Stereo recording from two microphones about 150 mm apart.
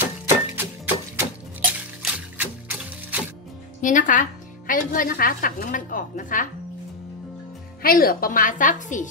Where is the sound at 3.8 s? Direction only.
60° left (ahead or behind).